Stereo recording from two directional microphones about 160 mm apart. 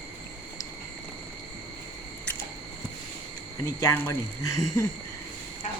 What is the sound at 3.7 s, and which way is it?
Speech, 15° left (ahead or behind).